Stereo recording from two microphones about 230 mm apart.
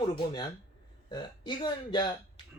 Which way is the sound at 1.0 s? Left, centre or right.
Centre.